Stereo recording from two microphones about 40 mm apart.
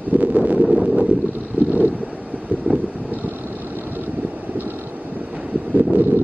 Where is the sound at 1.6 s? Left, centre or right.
Right.